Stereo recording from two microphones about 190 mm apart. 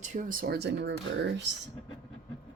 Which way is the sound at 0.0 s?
45° right (ahead or behind).